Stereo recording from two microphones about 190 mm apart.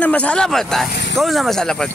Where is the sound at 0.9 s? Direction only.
65° left (ahead or behind).